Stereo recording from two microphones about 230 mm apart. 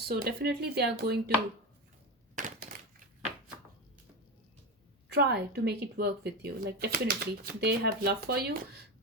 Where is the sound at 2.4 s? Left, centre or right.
Right.